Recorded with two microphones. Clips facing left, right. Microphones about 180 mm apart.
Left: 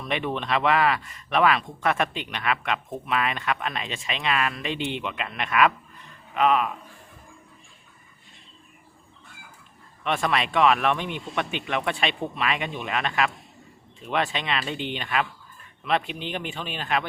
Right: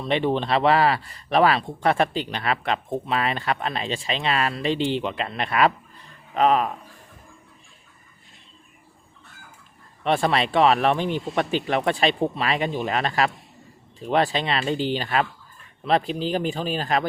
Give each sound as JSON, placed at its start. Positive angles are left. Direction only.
{"t": 0.0, "sound": "speech", "side_deg": -30}
{"t": 10.0, "sound": "speech", "side_deg": -35}